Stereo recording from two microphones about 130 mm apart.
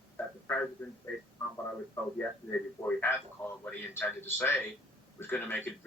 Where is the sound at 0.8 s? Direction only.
10° left (ahead or behind).